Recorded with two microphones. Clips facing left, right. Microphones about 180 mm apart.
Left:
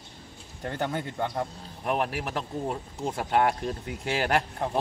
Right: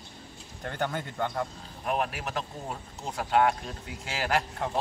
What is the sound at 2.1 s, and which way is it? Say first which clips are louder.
Speech: left 3 dB; 55° left (ahead or behind).